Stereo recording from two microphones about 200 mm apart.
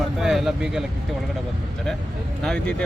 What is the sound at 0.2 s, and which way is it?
Speech, centre (ahead or behind).